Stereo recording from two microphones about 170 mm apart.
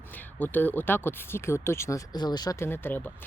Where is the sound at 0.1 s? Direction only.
10° left (ahead or behind).